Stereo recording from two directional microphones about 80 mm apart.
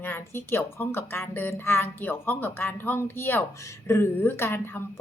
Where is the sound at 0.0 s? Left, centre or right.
Left.